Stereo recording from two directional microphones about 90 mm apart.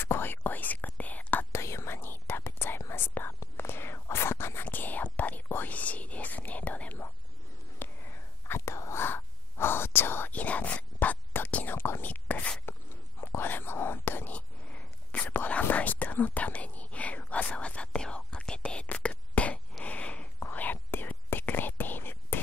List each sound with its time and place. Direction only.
0.0 s whispering: 25° left (ahead or behind)
1.5 s whispering: 30° left (ahead or behind); by 12.6 s 15° left (ahead or behind)
13.2 s whispering: 25° left (ahead or behind)